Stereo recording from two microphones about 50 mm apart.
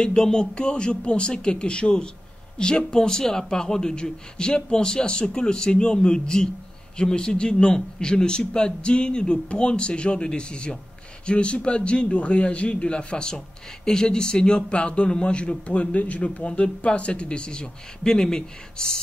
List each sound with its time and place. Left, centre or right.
0.0 s a man's voice: centre